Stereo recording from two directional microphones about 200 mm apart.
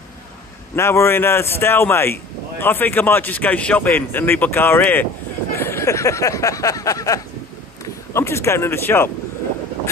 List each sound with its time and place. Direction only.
0.7 s speech: 15° left (ahead or behind)
5.5 s a sound: 10° left (ahead or behind)
7.8 s speech: 15° left (ahead or behind)